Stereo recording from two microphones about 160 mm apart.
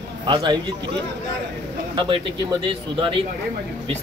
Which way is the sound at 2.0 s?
30° right (ahead or behind).